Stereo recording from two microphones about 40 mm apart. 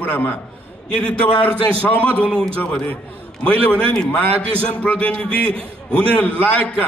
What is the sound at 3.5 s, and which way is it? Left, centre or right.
A man's voice, left.